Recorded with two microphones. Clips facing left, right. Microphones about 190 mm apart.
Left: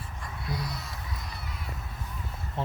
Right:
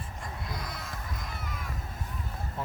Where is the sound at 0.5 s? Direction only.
50° right (ahead or behind).